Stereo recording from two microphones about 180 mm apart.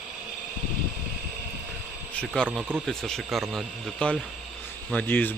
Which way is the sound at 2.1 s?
5° left (ahead or behind).